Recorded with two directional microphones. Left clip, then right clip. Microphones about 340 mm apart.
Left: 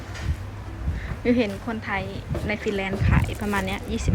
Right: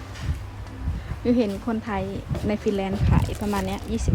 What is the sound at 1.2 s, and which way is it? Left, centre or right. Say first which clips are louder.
Speech: even; centre.